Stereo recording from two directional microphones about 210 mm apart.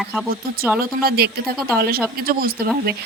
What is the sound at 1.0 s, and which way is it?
Speech, 50° right (ahead or behind).